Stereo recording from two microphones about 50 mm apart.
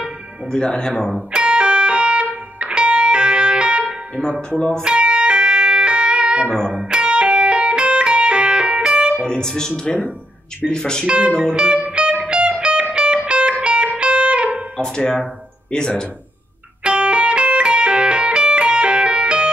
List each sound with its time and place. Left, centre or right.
0.5 s speech: centre
1.3 s music: right
4.2 s speech: centre
4.8 s music: centre
9.2 s speech: centre
11.1 s speech: right
11.8 s music: right
14.8 s speech: centre
16.8 s music: right